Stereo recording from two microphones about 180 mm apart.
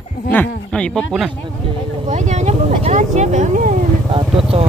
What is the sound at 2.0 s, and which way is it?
Speech, 40° right (ahead or behind).